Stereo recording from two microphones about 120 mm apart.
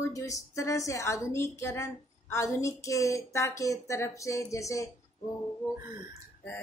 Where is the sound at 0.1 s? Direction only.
25° left (ahead or behind).